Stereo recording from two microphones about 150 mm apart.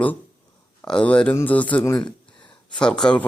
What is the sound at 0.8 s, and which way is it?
A man's voice, 10° left (ahead or behind).